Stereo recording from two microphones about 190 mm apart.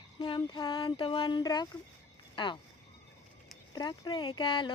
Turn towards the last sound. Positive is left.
turn(degrees=25)  # may be behind; listen again after turning